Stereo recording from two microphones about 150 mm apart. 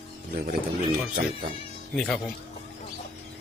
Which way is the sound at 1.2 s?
70° right (ahead or behind).